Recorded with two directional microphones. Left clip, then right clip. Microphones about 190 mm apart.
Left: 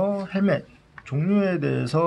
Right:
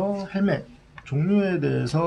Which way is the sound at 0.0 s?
35° left (ahead or behind).